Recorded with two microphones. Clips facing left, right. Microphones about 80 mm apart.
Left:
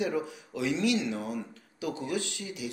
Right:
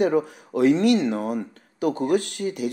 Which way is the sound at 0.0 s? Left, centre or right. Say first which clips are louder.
Right 10 dB; right.